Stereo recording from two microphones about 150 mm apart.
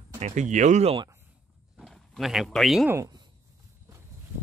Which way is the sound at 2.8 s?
20° right (ahead or behind).